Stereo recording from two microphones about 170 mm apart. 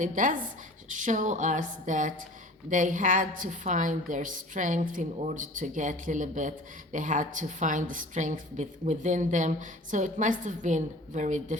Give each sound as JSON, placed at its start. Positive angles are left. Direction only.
{"t": 0.0, "sound": "a woman's voice", "side_deg": -50}